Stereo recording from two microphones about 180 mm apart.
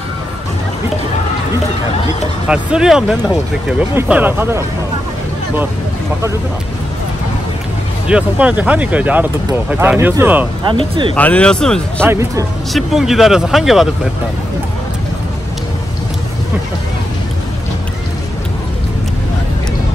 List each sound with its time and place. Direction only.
2.4 s speech: 5° right (ahead or behind)
8.1 s speech: 5° right (ahead or behind)
10.6 s speech: 25° right (ahead or behind)
11.1 s speech: 5° left (ahead or behind)
12.1 s speech: 15° right (ahead or behind)
12.7 s speech: centre (ahead or behind)